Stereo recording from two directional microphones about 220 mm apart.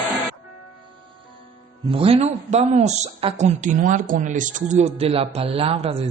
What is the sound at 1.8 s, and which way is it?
Speech, 25° right (ahead or behind).